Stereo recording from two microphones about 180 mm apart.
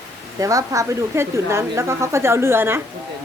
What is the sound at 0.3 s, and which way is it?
Speech, 20° right (ahead or behind).